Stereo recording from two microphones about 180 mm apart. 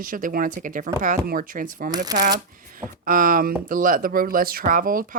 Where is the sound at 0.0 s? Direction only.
50° right (ahead or behind).